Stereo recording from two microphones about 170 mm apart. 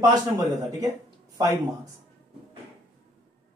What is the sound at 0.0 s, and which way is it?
Speech, 20° right (ahead or behind).